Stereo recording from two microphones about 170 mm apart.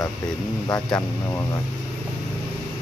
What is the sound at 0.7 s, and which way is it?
Speech, 25° left (ahead or behind).